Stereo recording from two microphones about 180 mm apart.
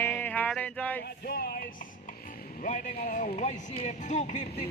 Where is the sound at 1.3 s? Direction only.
60° left (ahead or behind).